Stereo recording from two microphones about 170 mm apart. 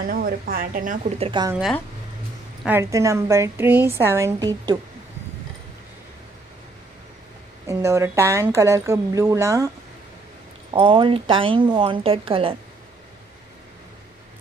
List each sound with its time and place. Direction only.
0.1 s a woman's voice: 60° right (ahead or behind)
1.1 s speech: 35° right (ahead or behind)
2.6 s a woman's voice: 15° right (ahead or behind)
7.6 s a woman's voice: 15° right (ahead or behind)
10.7 s speech: 30° right (ahead or behind)